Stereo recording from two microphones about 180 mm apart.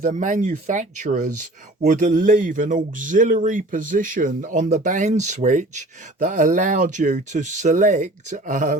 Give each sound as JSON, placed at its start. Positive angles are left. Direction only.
{"t": 0.0, "sound": "speech", "side_deg": -45}